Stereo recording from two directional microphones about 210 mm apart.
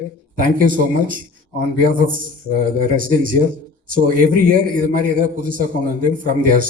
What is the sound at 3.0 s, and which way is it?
A man's voice, 40° right (ahead or behind).